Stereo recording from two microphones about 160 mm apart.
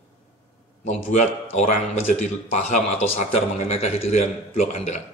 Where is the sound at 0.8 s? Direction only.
50° left (ahead or behind).